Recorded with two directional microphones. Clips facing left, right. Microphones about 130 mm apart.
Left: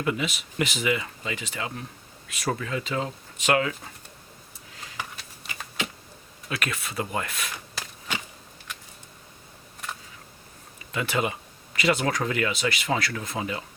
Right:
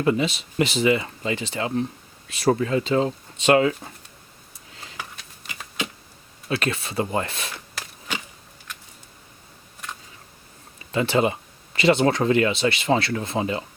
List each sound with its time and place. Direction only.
0.0 s speech: 30° right (ahead or behind)
4.9 s a sound: centre (ahead or behind)
6.5 s speech: 30° right (ahead or behind)
10.9 s speech: 30° right (ahead or behind)